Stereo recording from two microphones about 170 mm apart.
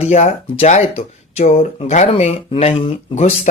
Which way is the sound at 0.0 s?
40° left (ahead or behind).